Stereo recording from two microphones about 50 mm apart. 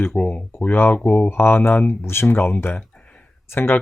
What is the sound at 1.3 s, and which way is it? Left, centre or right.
Speech, left.